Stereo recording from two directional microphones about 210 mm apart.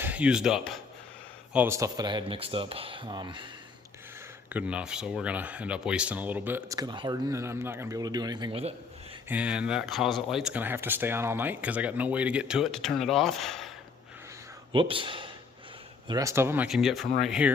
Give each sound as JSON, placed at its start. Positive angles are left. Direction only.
{"t": 0.0, "sound": "speech", "side_deg": -5}
{"t": 1.5, "sound": "speech", "side_deg": -10}
{"t": 4.5, "sound": "speech", "side_deg": -5}
{"t": 9.3, "sound": "speech", "side_deg": -5}
{"t": 14.7, "sound": "speech", "side_deg": -25}